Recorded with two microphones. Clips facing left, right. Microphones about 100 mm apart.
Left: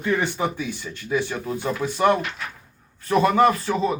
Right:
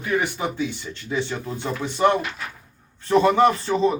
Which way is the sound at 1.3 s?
10° left (ahead or behind).